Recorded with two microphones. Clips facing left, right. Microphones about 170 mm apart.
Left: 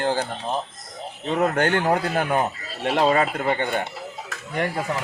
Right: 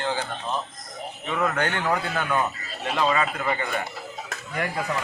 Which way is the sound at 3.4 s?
30° left (ahead or behind).